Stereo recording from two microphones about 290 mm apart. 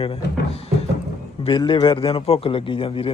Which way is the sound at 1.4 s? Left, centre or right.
Centre.